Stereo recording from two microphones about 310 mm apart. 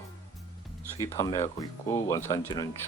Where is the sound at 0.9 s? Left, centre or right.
Centre.